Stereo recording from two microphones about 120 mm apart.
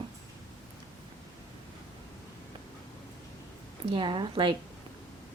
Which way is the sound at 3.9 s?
40° right (ahead or behind).